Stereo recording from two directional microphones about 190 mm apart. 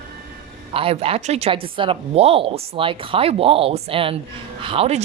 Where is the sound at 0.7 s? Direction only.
30° right (ahead or behind).